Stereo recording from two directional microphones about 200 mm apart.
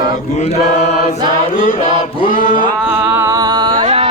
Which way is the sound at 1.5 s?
45° left (ahead or behind).